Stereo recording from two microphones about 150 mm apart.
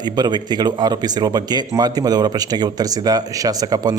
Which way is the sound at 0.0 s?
30° right (ahead or behind).